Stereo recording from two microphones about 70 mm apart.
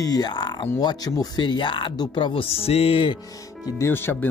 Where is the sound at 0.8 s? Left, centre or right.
Left.